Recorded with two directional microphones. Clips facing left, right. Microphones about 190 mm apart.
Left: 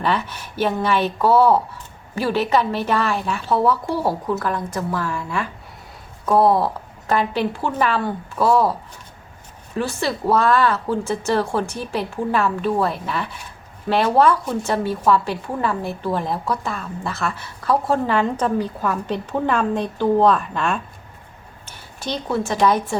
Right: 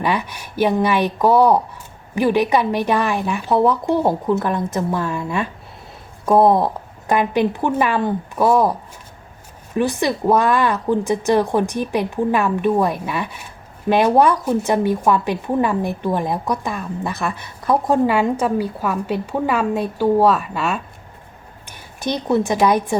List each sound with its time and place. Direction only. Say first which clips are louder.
0.0 s a woman's voice: right 1 dB; 10° right (ahead or behind)
9.7 s speech: right 4 dB; 15° right (ahead or behind)
21.7 s a woman's voice: right 4 dB; 15° right (ahead or behind)